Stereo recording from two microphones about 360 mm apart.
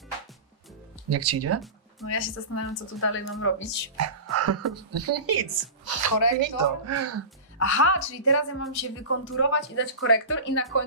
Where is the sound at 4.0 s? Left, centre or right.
Right.